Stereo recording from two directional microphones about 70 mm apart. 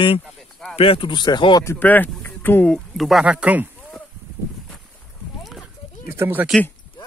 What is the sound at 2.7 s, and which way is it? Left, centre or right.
Speech, centre.